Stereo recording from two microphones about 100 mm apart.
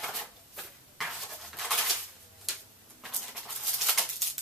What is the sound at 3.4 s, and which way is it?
Maraca, centre (ahead or behind).